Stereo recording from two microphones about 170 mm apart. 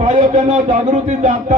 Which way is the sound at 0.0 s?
45° right (ahead or behind).